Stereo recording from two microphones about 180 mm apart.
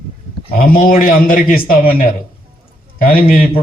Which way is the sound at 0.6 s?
55° left (ahead or behind).